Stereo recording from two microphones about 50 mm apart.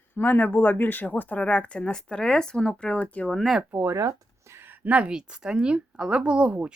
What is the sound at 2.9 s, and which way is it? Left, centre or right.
Speech, left.